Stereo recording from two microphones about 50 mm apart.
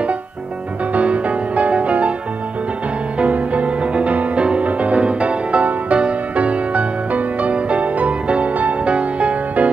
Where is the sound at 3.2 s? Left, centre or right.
Right.